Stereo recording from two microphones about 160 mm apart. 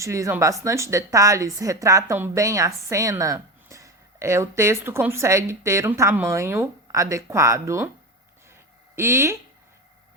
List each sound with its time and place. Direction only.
0.0 s speech: 20° right (ahead or behind)
9.0 s speech: 15° right (ahead or behind)